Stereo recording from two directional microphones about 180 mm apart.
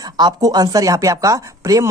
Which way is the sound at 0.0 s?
20° right (ahead or behind).